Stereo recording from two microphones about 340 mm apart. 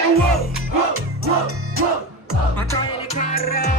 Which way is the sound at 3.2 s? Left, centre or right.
Left.